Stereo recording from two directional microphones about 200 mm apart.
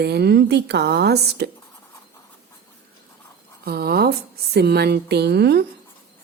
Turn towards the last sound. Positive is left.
turn(degrees=-55)  # may be behind; listen again after turning